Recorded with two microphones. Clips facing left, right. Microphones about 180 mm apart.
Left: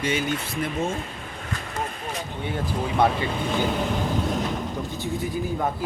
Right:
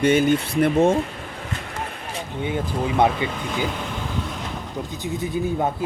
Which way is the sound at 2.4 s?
20° right (ahead or behind).